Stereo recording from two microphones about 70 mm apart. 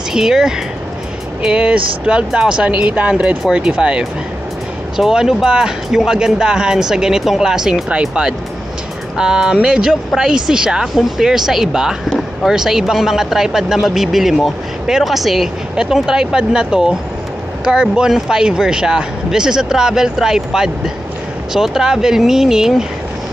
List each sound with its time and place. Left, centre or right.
0.1 s speech: centre